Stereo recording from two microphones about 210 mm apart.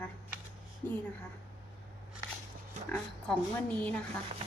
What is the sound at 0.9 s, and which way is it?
Speech, 5° left (ahead or behind).